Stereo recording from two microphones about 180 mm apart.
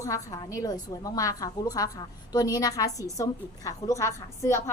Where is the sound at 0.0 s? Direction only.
20° left (ahead or behind).